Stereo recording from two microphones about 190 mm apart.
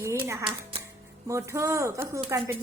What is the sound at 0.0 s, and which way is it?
Music, 15° right (ahead or behind).